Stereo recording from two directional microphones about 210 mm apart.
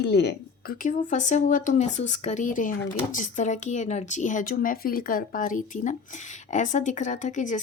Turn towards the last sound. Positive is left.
turn(degrees=35)  # may be behind; listen again after turning